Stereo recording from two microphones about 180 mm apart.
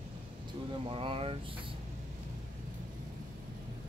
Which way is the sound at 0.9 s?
30° right (ahead or behind).